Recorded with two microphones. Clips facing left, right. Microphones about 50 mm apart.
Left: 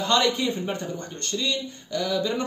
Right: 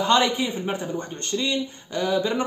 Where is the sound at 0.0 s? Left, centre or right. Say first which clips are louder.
Right 2 dB; right.